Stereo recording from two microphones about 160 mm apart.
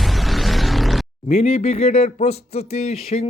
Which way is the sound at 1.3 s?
40° left (ahead or behind).